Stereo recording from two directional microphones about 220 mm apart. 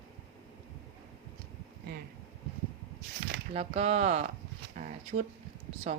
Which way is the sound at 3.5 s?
30° right (ahead or behind).